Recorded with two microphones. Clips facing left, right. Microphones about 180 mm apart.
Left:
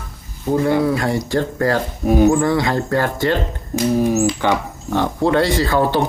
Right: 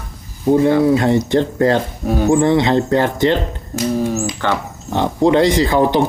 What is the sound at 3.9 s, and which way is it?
Speech, 15° left (ahead or behind).